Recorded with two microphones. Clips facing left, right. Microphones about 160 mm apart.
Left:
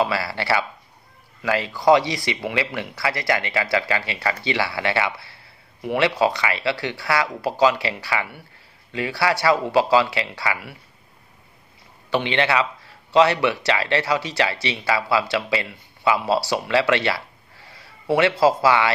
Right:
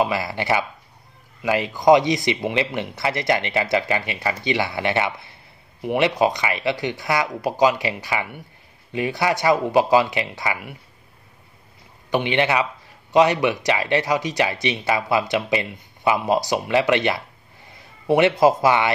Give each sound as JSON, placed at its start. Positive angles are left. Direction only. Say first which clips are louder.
{"t": 0.0, "sound": "speech", "louder": "right 1 dB", "side_deg": -20}
{"t": 12.1, "sound": "speech", "louder": "right 1 dB", "side_deg": -15}